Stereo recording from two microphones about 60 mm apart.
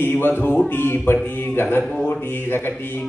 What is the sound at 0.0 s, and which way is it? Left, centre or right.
A man's voice, left.